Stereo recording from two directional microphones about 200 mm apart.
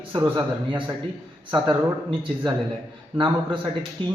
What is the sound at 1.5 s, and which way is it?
Speech, 25° right (ahead or behind).